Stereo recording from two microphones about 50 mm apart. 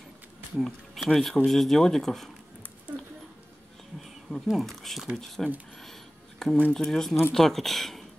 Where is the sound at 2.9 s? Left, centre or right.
Right.